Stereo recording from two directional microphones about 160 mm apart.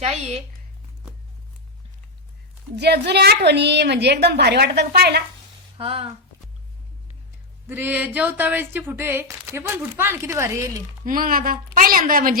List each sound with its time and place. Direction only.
0.0 s speech: 40° right (ahead or behind)
2.7 s a woman's voice: 90° right
5.7 s speech: 35° right (ahead or behind)
7.7 s speech: 10° right (ahead or behind)
11.0 s a woman's voice: 60° right (ahead or behind)